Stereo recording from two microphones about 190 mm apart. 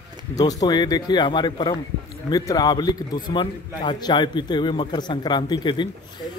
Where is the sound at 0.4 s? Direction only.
20° left (ahead or behind).